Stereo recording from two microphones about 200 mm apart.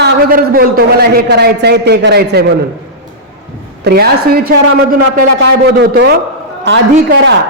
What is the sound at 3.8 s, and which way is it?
Speech, 50° right (ahead or behind).